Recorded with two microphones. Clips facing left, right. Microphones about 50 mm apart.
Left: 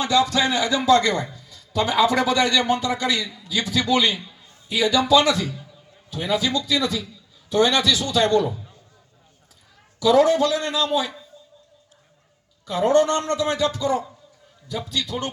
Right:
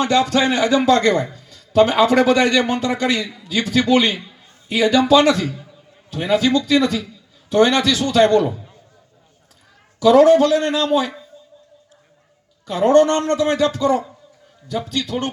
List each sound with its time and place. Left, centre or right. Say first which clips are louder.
0.0 s a man's voice: right 3 dB; right
10.0 s a man's voice: right 6 dB; right
12.6 s a man's voice: right 5 dB; right